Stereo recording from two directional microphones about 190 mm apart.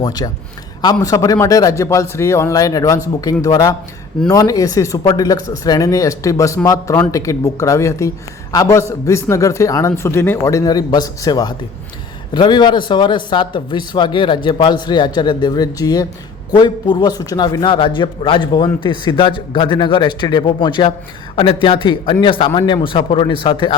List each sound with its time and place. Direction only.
0.0 s a man's voice: 20° left (ahead or behind)